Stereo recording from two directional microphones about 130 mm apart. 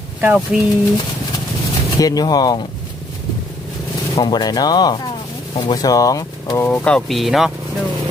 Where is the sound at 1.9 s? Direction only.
30° left (ahead or behind).